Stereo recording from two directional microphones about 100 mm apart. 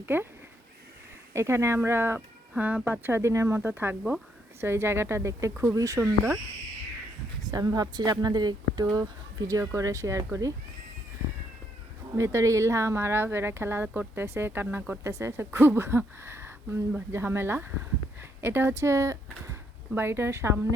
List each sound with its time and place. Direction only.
0.0 s speech: 20° right (ahead or behind)
1.3 s speech: 30° right (ahead or behind)
7.5 s speech: 40° right (ahead or behind)
12.1 s speech: 30° right (ahead or behind)